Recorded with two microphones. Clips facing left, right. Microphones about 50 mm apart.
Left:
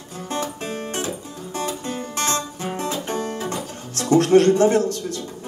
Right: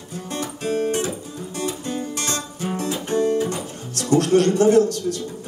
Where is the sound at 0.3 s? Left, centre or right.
Left.